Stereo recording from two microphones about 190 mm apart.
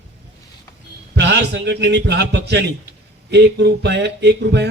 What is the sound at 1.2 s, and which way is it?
A man's voice, 65° right (ahead or behind).